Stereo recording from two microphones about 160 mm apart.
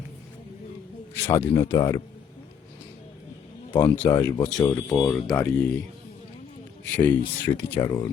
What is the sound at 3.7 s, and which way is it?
Speech, 15° left (ahead or behind).